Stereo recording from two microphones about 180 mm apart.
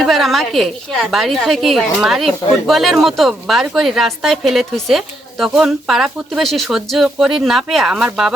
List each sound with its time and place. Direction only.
0.0 s a woman's voice: centre (ahead or behind)